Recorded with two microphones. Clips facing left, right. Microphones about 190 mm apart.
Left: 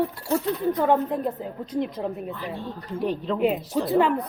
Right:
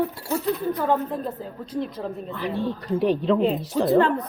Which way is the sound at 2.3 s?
80° right.